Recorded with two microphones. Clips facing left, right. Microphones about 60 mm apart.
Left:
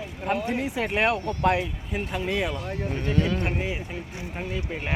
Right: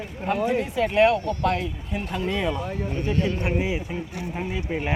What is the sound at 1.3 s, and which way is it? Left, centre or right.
Speech, left.